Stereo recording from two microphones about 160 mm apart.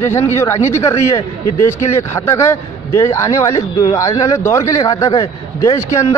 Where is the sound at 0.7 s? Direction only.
15° left (ahead or behind).